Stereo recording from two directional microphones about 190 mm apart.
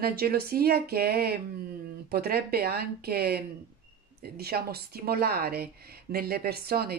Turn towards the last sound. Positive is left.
turn(degrees=-55)  # may be behind; listen again after turning